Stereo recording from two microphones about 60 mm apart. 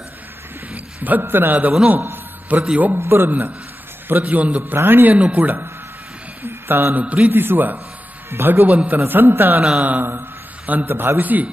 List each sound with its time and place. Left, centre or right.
0.7 s a sound: right
1.2 s a man's voice: right
3.0 s a man's voice: right
4.1 s speech: right
4.7 s speech: right
6.4 s a man's voice: right